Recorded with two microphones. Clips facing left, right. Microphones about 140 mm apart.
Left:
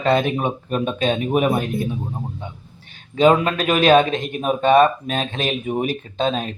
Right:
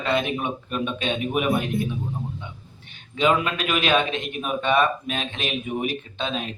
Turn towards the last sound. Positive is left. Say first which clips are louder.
# left 7 dB
turn(degrees=40)  # may be behind; listen again after turning